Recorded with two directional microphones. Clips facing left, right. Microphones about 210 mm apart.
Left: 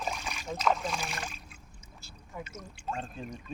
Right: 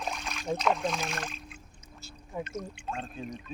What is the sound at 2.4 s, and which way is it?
Speech, 5° left (ahead or behind).